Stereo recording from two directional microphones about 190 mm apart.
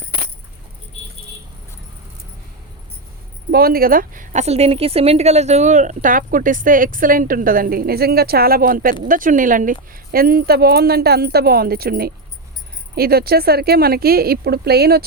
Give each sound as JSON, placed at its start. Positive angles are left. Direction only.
{"t": 3.5, "sound": "a woman's voice", "side_deg": -50}